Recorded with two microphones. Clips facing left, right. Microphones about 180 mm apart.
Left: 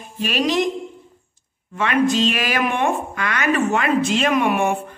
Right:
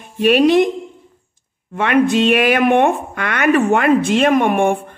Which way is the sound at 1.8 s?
60° right (ahead or behind).